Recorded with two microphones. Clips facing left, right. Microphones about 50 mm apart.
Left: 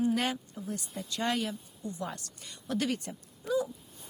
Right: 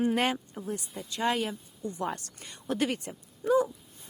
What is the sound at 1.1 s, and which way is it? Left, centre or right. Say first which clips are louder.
Speech: right 3 dB; centre.